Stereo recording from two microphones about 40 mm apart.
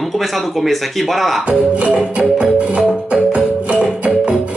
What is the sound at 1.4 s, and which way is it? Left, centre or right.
Music, right.